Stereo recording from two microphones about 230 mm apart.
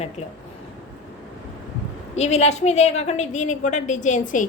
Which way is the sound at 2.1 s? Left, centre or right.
Left.